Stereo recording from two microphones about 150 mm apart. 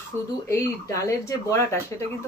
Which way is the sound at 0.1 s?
15° right (ahead or behind).